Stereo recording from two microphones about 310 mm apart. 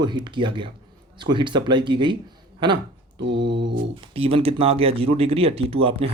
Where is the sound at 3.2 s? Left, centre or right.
Right.